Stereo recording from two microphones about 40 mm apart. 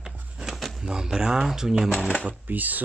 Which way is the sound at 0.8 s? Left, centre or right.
Centre.